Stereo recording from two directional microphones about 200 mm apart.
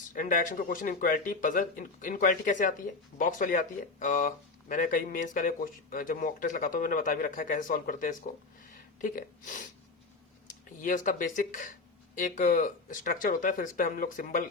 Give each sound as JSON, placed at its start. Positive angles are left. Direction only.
{"t": 0.1, "sound": "speech", "side_deg": 40}